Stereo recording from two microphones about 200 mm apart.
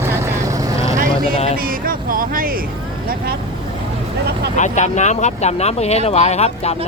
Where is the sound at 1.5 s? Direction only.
45° right (ahead or behind).